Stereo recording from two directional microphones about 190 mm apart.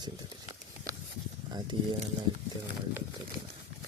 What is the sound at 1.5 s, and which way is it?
Speech, 20° right (ahead or behind).